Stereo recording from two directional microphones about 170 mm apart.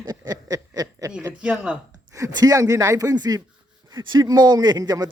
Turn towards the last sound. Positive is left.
turn(degrees=-20)  # may be behind; listen again after turning